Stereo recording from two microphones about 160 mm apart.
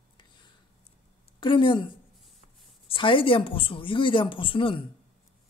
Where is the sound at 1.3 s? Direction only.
30° left (ahead or behind).